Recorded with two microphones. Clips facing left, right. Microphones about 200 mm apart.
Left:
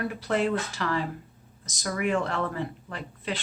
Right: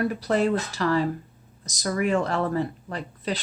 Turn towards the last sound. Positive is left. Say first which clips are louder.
# right 4 dB
turn(degrees=-40)  # may be behind; listen again after turning